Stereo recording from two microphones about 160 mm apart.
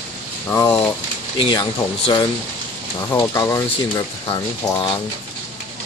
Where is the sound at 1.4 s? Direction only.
30° left (ahead or behind).